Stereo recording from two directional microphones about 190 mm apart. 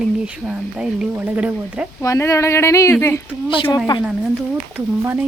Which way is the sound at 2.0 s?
15° left (ahead or behind).